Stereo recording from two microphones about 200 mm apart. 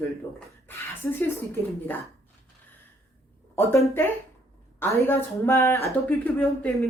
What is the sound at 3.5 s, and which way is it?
A woman's voice, 15° left (ahead or behind).